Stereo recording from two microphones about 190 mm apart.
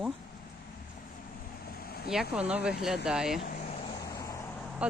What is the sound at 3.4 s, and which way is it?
Vehicle, 45° left (ahead or behind).